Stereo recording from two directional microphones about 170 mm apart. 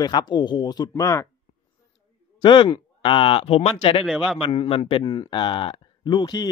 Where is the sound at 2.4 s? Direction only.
30° left (ahead or behind).